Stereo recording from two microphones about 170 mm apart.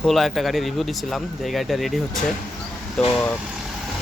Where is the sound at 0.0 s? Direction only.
Centre (ahead or behind).